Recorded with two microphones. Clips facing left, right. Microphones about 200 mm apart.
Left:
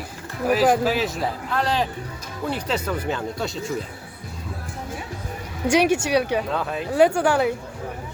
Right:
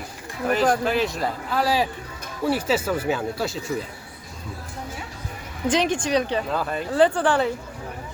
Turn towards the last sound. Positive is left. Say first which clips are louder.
# left 1 dB
turn(degrees=10)  # may be behind; listen again after turning